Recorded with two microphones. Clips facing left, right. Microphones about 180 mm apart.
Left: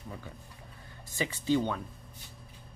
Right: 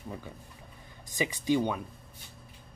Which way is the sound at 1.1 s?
15° right (ahead or behind).